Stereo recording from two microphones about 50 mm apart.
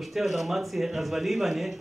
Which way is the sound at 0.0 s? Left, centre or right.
Centre.